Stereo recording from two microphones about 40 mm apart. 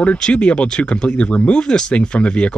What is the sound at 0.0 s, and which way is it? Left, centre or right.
Speech, left.